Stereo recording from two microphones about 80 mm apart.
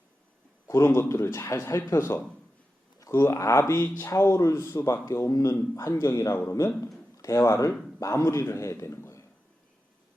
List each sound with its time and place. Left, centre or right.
0.7 s a man's voice: left